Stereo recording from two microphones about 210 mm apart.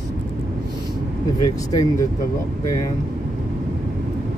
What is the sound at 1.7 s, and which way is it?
Speech, 15° left (ahead or behind).